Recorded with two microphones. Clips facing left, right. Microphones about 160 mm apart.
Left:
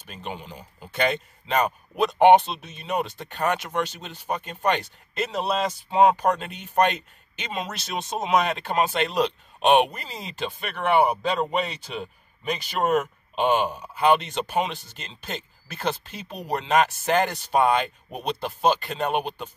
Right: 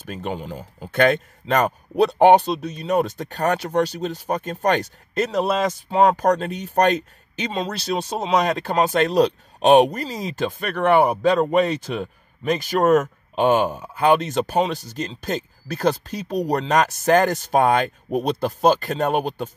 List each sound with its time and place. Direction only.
0.1 s a man's voice: 45° right (ahead or behind)
2.0 s speech: 35° right (ahead or behind)